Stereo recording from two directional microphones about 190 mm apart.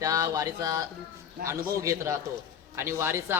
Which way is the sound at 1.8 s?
15° right (ahead or behind).